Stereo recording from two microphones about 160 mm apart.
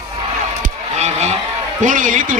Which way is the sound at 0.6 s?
45° right (ahead or behind).